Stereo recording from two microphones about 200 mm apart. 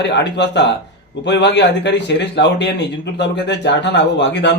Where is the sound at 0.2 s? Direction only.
60° left (ahead or behind).